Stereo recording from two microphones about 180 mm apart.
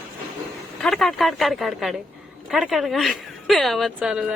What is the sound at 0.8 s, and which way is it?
A woman's voice, centre (ahead or behind).